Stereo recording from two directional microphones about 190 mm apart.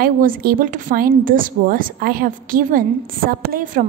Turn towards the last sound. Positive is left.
turn(degrees=-45)  # may be behind; listen again after turning